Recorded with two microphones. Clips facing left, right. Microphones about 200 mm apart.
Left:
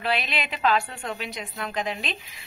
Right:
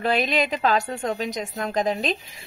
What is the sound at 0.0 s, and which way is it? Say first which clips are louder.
A woman's voice: right 6 dB; 45° right (ahead or behind).